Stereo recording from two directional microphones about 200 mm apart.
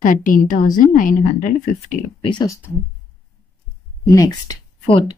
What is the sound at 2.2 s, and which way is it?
Speech, 20° left (ahead or behind).